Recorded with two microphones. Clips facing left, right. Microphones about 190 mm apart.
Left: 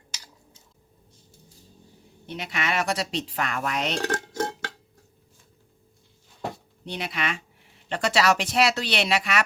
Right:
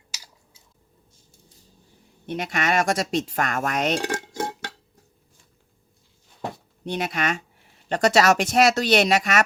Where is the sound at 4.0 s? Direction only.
10° right (ahead or behind).